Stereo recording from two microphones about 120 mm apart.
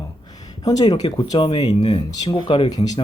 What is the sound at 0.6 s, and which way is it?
Speech, 35° left (ahead or behind).